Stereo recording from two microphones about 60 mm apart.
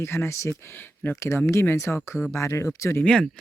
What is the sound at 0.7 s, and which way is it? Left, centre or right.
Speech, left.